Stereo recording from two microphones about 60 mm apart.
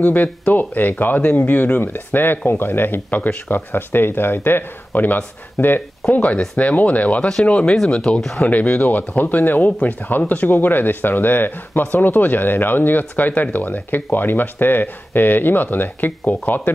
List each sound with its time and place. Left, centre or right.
0.0 s speech: left
6.0 s speech: centre
6.6 s speech: left
8.4 s speech: left